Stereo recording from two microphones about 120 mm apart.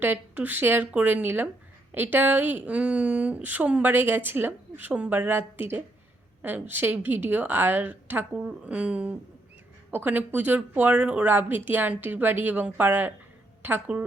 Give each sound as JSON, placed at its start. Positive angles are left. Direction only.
{"t": 0.0, "sound": "a woman's voice", "side_deg": -15}